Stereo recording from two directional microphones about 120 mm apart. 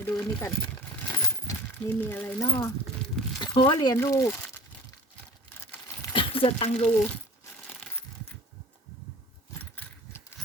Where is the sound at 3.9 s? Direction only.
25° left (ahead or behind).